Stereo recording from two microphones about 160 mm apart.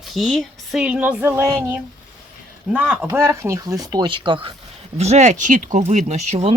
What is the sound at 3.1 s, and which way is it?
Speech, 20° right (ahead or behind).